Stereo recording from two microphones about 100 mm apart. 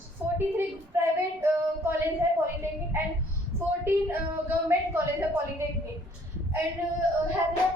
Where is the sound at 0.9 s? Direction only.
25° right (ahead or behind).